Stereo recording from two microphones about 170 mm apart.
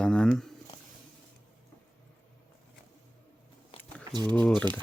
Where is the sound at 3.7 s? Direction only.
35° left (ahead or behind).